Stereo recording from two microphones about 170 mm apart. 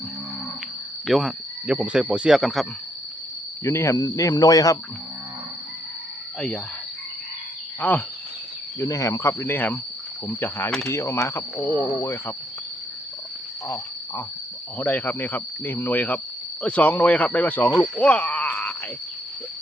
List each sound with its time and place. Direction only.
1.0 s speech: centre (ahead or behind)
3.6 s speech: 15° left (ahead or behind)
7.8 s speech: 10° left (ahead or behind)
14.8 s speech: 10° left (ahead or behind)